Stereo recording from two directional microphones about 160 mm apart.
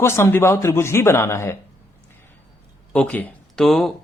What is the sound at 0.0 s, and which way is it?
Speech, 15° left (ahead or behind).